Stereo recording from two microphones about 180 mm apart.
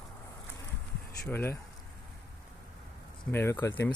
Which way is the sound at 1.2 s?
15° left (ahead or behind).